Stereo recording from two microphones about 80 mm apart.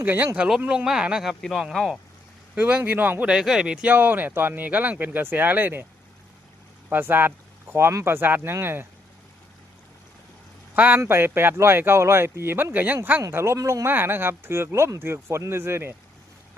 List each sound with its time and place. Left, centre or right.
0.0 s speech: right
0.3 s speech: centre
1.4 s speech: centre
2.6 s speech: centre
3.2 s speech: centre; by 5.8 s right
6.9 s speech: right
10.8 s a man's voice: centre
11.0 s speech: right
13.3 s speech: right